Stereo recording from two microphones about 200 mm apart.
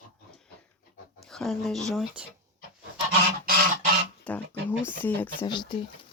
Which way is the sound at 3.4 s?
50° right (ahead or behind).